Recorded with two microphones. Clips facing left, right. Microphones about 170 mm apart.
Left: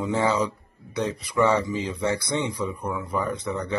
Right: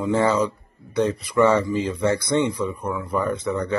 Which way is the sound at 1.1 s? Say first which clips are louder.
Right 3 dB; 10° left (ahead or behind).